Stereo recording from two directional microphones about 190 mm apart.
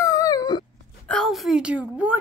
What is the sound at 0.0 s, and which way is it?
Dog, 20° left (ahead or behind).